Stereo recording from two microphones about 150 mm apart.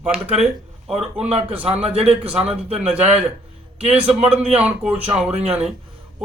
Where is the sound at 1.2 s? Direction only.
40° right (ahead or behind).